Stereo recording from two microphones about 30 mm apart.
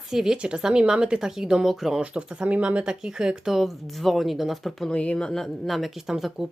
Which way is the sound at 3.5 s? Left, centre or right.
Centre.